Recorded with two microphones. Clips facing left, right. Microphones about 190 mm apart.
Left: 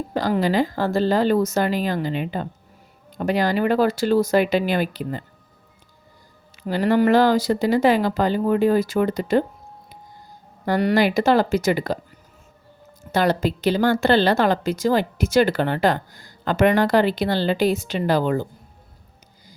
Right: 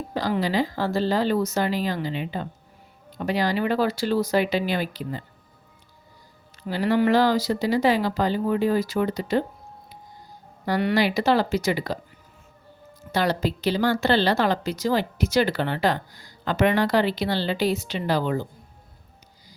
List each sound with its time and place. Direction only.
0.1 s a woman's voice: 50° left (ahead or behind)
6.7 s a woman's voice: 50° left (ahead or behind)
10.7 s a woman's voice: 45° left (ahead or behind)
13.1 s a woman's voice: 50° left (ahead or behind)